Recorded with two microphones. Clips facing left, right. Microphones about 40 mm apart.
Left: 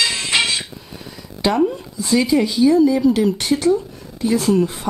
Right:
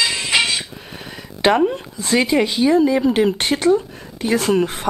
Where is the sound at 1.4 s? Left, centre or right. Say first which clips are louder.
Right 2 dB; right.